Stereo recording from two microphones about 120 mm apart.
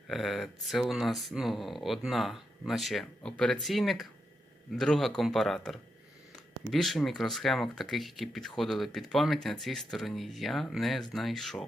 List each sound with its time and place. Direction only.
0.1 s speech: centre (ahead or behind)